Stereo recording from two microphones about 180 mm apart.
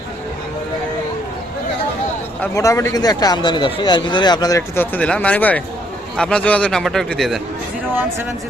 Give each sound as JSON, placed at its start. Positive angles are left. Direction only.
{"t": 2.4, "sound": "a man's voice", "side_deg": 15}